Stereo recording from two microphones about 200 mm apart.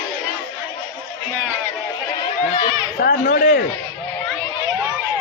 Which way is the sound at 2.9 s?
50° left (ahead or behind).